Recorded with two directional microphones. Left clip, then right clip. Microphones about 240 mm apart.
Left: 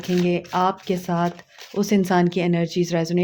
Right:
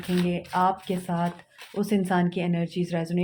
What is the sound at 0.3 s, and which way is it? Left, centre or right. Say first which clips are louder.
Speech: left 2 dB; left.